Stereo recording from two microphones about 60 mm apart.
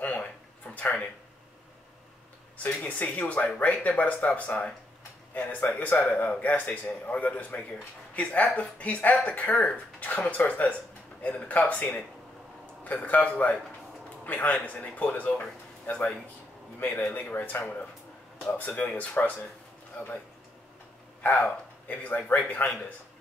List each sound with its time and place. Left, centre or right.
0.0 s a sound: left
2.5 s speech: left
15.9 s speech: left
17.1 s speech: left
21.2 s speech: left